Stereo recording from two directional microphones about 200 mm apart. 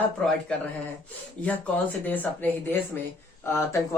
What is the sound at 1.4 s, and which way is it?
Speech, 5° left (ahead or behind).